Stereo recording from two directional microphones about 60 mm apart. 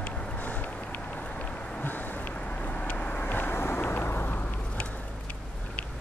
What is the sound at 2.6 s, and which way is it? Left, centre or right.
Vehicle, left.